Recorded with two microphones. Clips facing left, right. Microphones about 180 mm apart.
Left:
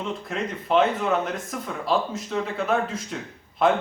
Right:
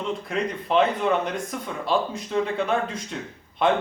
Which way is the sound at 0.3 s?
Centre (ahead or behind).